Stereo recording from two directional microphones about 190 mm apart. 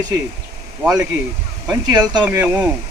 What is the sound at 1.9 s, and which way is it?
Speech, 20° right (ahead or behind).